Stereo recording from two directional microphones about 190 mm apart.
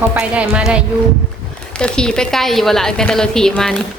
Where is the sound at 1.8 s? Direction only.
5° left (ahead or behind).